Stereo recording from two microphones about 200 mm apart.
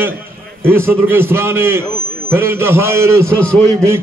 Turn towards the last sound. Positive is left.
turn(degrees=5)  # may be behind; listen again after turning